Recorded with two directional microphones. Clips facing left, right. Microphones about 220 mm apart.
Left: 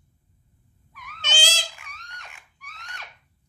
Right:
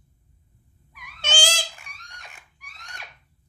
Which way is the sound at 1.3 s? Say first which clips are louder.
Right 3 dB; 50° right (ahead or behind).